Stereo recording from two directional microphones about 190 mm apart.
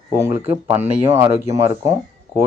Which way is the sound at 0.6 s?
10° right (ahead or behind).